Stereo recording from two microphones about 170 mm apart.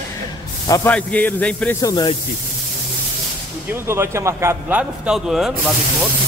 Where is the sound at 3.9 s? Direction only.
15° right (ahead or behind).